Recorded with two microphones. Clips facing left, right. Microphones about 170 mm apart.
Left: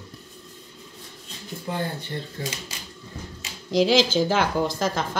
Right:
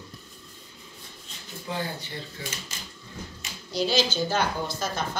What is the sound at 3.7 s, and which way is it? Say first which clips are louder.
Speech: left 6 dB; 90° left.